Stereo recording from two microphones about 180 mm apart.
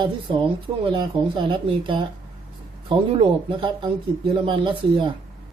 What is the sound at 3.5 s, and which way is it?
A woman's voice, 25° right (ahead or behind).